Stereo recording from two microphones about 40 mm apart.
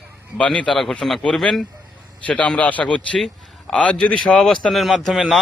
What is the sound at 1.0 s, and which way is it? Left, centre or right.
Speech, centre.